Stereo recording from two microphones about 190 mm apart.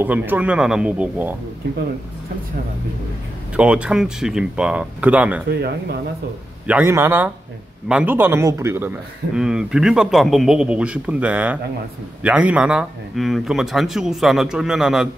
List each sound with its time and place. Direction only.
0.0 s a man's voice: 10° right (ahead or behind)
3.5 s a man's voice: 5° right (ahead or behind)
5.5 s speech: 55° right (ahead or behind)
6.7 s a man's voice: 10° right (ahead or behind)